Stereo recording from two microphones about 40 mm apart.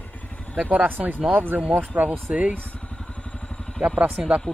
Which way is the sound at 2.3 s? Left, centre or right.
Right.